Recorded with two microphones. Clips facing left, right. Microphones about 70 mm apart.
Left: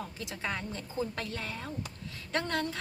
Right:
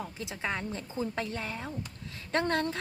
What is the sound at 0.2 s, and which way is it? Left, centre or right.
A woman's voice, centre.